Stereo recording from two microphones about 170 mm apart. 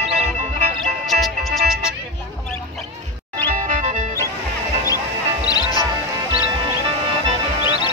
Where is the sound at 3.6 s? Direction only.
50° right (ahead or behind).